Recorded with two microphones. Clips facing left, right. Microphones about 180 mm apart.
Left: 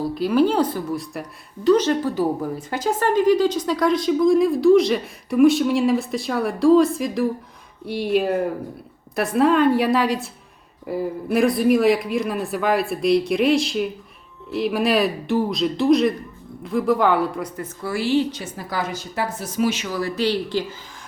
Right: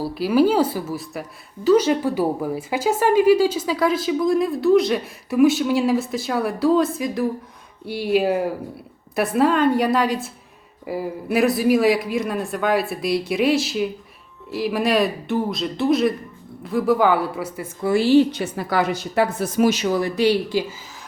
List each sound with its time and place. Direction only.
0.0 s a woman's voice: 5° right (ahead or behind)
17.8 s a woman's voice: 25° right (ahead or behind)
18.3 s a woman's voice: 65° right (ahead or behind)
19.9 s speech: 20° right (ahead or behind)